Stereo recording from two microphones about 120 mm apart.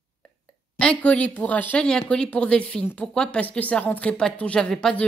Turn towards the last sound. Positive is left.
turn(degrees=5)  # may be behind; listen again after turning